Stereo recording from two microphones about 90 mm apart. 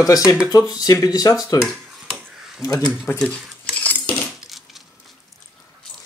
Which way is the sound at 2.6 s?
40° left (ahead or behind).